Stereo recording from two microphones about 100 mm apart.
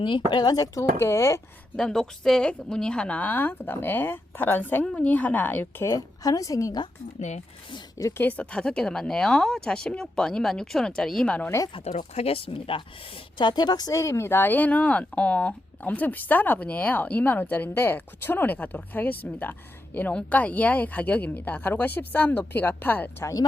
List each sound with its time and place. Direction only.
0.0 s speech: 55° left (ahead or behind); by 1.4 s 30° left (ahead or behind)
1.7 s speech: 5° left (ahead or behind)
5.8 s speech: 35° left (ahead or behind)
8.2 s speech: 15° left (ahead or behind)
11.7 s speech: 80° left; by 12.8 s 60° left (ahead or behind)
13.4 s speech: 45° left (ahead or behind); by 23.0 s 20° left (ahead or behind)
23.2 s speech: 40° left (ahead or behind)